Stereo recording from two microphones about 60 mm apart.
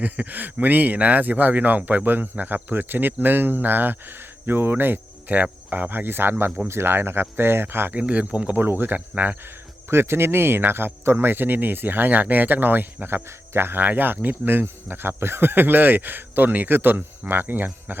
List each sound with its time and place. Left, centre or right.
0.0 s speech: right
7.9 s speech: right
8.6 s speech: right
9.9 s speech: right